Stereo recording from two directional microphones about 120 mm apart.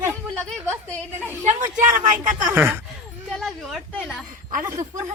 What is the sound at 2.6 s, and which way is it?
Speech, 15° right (ahead or behind).